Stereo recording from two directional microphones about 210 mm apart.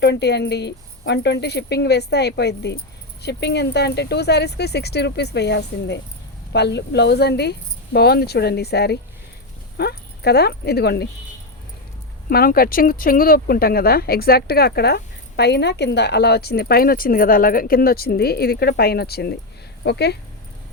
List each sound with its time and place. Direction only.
0.0 s speech: 55° left (ahead or behind)
12.3 s speech: 45° left (ahead or behind)